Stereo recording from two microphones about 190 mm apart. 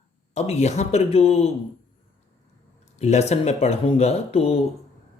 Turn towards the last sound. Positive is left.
turn(degrees=35)  # may be behind; listen again after turning